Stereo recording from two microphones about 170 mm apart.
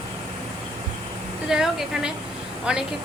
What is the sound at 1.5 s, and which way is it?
A woman's voice, 5° right (ahead or behind).